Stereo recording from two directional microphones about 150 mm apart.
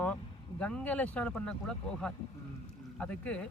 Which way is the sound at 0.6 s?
10° left (ahead or behind).